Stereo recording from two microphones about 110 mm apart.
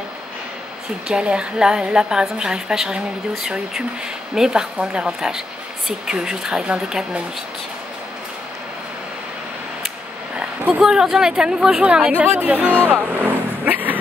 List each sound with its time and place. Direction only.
1.0 s speech: 10° right (ahead or behind)
10.7 s speech: 5° right (ahead or behind)
13.2 s vehicle: 15° right (ahead or behind)